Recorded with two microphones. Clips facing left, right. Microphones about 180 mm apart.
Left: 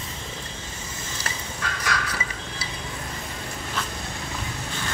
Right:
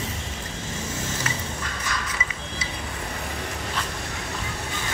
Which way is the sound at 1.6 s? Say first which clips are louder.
Left 2 dB; 70° left (ahead or behind).